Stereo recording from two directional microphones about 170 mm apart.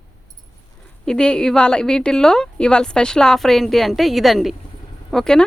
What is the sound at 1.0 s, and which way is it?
A woman's voice, 5° left (ahead or behind).